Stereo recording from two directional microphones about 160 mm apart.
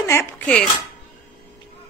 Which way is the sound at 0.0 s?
15° left (ahead or behind).